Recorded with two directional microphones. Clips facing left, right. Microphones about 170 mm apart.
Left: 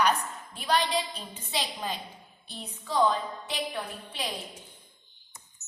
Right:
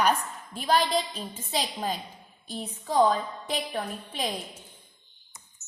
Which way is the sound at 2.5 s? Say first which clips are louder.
Right 5 dB; 40° right (ahead or behind).